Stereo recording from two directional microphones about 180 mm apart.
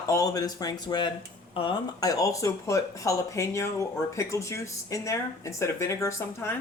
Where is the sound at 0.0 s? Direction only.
20° left (ahead or behind).